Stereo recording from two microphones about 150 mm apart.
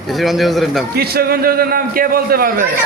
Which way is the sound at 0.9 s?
90° right.